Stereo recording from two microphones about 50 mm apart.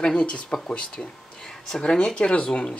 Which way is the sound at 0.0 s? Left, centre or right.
Centre.